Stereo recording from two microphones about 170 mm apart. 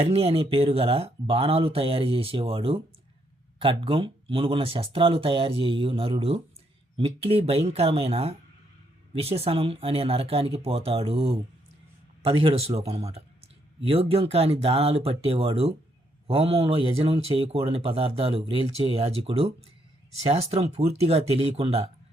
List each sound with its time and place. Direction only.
0.0 s speech: 35° right (ahead or behind)